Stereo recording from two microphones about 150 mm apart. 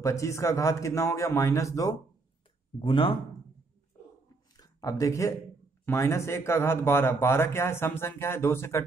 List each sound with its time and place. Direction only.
0.0 s a man's voice: 20° left (ahead or behind)
2.8 s speech: 35° left (ahead or behind)
4.6 s speech: 25° left (ahead or behind)